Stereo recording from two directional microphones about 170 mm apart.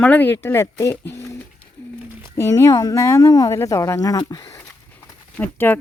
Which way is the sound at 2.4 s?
20° left (ahead or behind).